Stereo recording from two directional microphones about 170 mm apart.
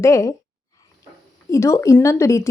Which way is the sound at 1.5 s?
15° left (ahead or behind).